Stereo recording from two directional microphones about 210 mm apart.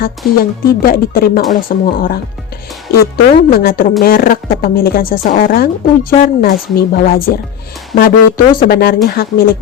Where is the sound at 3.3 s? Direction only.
45° left (ahead or behind).